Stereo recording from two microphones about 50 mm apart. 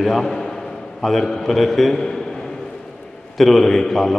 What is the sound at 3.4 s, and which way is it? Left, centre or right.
Speech, centre.